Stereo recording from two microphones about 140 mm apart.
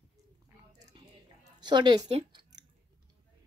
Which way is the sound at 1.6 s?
30° right (ahead or behind).